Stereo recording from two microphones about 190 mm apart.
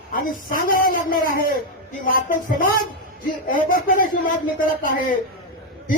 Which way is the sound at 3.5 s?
45° left (ahead or behind).